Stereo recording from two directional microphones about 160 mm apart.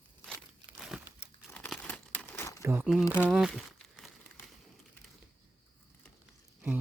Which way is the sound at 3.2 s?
5° right (ahead or behind).